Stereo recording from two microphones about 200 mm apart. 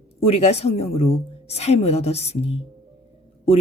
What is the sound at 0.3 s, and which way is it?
Speech, 30° left (ahead or behind).